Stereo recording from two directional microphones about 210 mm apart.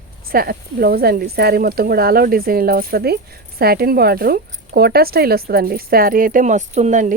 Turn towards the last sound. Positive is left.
turn(degrees=-35)  # may be behind; listen again after turning